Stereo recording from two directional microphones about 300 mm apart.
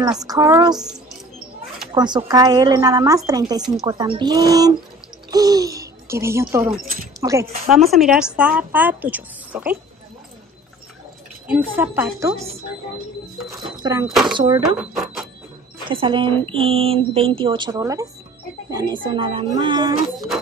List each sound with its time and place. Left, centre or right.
0.0 s speech: centre
2.0 s speech: centre
11.4 s speech: centre
13.5 s speech: centre
15.9 s speech: centre